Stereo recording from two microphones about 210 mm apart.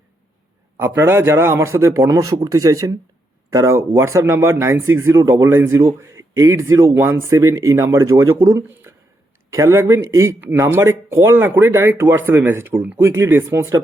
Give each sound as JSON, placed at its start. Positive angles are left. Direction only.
{"t": 0.8, "sound": "speech", "side_deg": -10}